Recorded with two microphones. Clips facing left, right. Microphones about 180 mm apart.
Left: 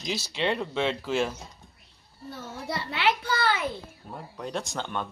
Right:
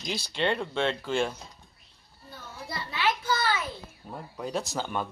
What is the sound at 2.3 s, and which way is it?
A child's voice, 80° left.